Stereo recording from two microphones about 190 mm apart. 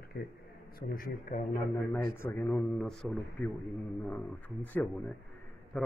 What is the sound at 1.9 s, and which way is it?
Speech, 10° left (ahead or behind).